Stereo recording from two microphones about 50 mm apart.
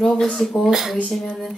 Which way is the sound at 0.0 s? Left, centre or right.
Centre.